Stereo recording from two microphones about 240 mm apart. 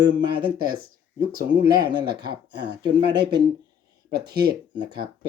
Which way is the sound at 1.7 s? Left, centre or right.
Centre.